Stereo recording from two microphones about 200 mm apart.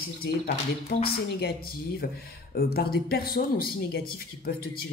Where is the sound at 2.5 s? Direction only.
50° left (ahead or behind).